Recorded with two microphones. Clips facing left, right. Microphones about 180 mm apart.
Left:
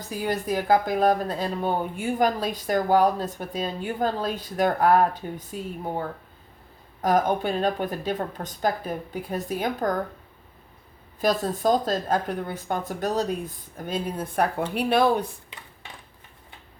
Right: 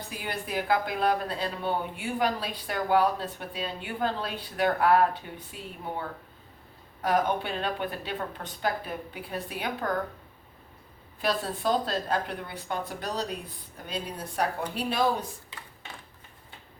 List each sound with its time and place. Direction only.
0.0 s speech: 40° left (ahead or behind)
7.0 s speech: 40° left (ahead or behind)
11.2 s speech: 45° left (ahead or behind); by 15.3 s 60° left (ahead or behind)